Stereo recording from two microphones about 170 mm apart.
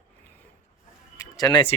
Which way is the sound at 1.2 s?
25° left (ahead or behind).